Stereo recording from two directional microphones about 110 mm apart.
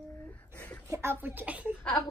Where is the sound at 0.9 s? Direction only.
20° right (ahead or behind).